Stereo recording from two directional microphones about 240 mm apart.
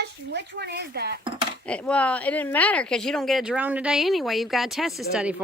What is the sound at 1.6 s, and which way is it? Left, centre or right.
Speech, centre.